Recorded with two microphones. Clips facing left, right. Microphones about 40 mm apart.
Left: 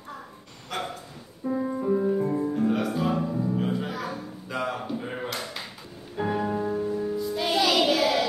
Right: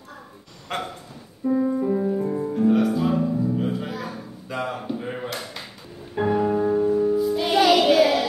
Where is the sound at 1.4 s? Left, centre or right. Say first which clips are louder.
Right 5 dB; centre.